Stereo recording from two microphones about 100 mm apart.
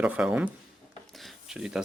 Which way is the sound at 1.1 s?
Centre (ahead or behind).